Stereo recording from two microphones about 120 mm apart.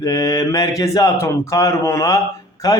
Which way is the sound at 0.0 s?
30° left (ahead or behind).